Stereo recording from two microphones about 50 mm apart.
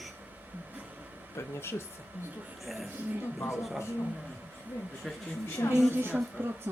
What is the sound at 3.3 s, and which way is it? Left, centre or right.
Speech, left.